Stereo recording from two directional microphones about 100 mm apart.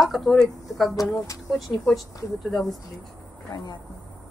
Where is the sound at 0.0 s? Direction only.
Centre (ahead or behind).